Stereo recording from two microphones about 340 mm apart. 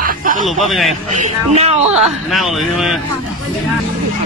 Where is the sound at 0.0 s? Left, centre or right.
Right.